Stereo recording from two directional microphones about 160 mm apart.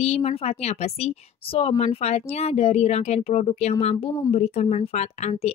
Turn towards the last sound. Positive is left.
turn(degrees=45)  # may be behind; listen again after turning